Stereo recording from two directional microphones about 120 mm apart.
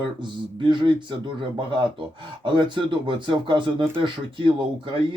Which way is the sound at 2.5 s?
40° right (ahead or behind).